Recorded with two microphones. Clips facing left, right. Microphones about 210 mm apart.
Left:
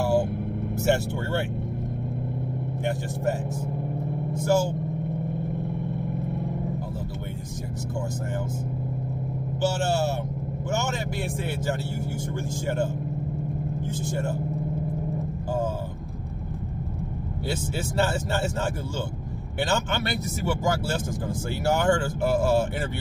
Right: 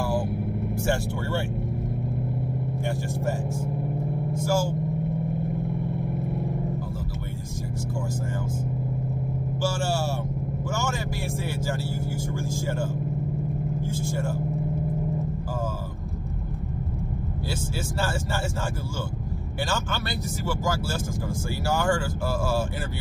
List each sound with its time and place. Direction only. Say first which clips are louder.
4.5 s speech: left 3 dB; 20° left (ahead or behind)
9.6 s speech: left 3 dB; 20° left (ahead or behind)
13.9 s speech: left 2 dB; 20° left (ahead or behind)
17.5 s speech: left 4 dB; 20° left (ahead or behind)
19.6 s speech: left 4 dB; 20° left (ahead or behind)